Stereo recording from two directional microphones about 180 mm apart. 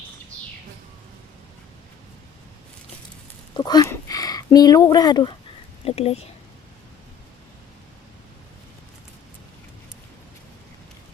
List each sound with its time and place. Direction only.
3.5 s speech: 20° left (ahead or behind)
5.8 s speech: 35° left (ahead or behind)